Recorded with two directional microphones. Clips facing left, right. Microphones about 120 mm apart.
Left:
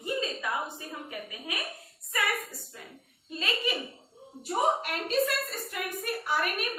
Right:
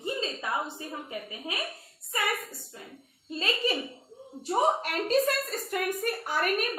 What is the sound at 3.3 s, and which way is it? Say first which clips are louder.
Speech: right 3 dB; 35° right (ahead or behind).